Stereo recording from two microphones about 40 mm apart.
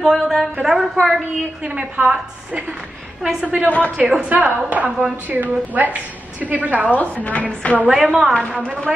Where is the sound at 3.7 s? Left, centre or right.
Left.